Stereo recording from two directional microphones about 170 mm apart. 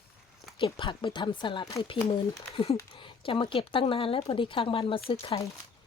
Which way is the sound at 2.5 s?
30° left (ahead or behind).